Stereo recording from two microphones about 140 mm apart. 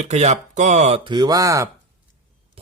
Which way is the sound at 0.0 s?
55° right (ahead or behind).